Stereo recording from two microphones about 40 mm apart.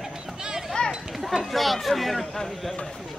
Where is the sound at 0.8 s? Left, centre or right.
Left.